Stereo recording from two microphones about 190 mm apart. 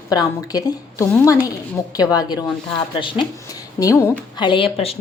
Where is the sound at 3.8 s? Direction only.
15° left (ahead or behind).